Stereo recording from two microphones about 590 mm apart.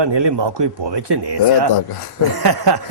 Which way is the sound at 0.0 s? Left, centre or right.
Right.